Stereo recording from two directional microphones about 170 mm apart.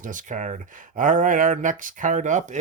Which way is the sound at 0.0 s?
50° right (ahead or behind).